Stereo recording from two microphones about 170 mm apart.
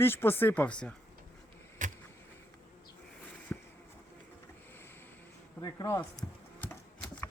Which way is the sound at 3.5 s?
15° left (ahead or behind).